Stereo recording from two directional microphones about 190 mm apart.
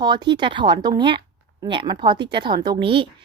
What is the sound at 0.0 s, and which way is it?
Speech, 20° right (ahead or behind).